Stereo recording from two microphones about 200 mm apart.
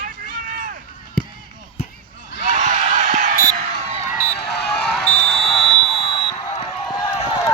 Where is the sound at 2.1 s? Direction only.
40° right (ahead or behind).